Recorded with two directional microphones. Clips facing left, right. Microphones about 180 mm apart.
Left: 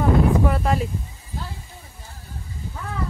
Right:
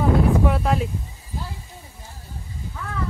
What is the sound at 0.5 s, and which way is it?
Speech, centre (ahead or behind).